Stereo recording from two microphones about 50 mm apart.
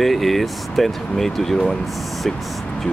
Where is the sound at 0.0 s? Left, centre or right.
Centre.